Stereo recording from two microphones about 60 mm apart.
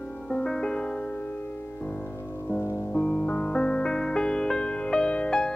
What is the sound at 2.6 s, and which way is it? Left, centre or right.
Music, left.